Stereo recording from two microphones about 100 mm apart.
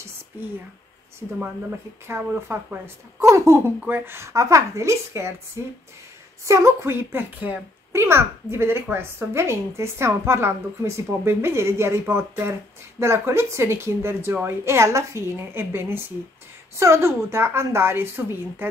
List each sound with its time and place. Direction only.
2.0 s a woman's voice: 25° right (ahead or behind)
6.4 s a woman's voice: 30° right (ahead or behind)